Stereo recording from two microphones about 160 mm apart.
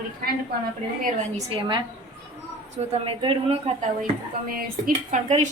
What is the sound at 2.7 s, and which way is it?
Speech, 35° right (ahead or behind).